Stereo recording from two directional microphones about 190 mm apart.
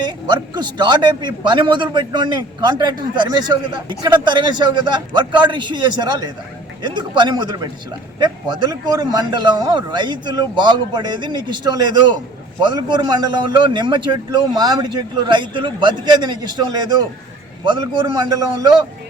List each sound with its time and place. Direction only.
0.3 s a man's voice: 25° right (ahead or behind)